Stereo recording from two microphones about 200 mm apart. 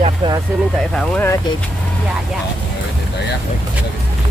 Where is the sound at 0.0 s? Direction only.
20° right (ahead or behind).